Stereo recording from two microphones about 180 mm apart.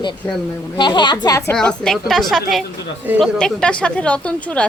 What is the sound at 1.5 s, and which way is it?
Speech, 5° left (ahead or behind).